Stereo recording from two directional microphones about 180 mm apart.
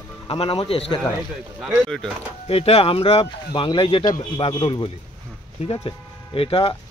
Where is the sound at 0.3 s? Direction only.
30° left (ahead or behind).